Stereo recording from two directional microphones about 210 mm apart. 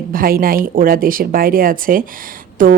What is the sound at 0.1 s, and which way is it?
Speech, 45° right (ahead or behind).